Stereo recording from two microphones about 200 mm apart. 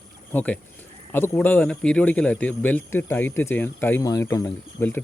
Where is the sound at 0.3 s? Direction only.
5° left (ahead or behind).